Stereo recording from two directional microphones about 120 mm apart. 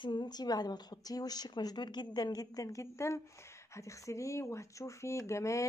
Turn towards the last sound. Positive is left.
turn(degrees=25)  # may be behind; listen again after turning